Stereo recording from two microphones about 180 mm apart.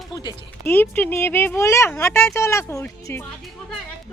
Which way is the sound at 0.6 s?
10° left (ahead or behind).